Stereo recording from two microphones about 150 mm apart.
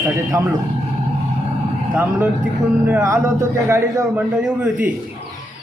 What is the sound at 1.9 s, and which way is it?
A man's voice, 10° right (ahead or behind).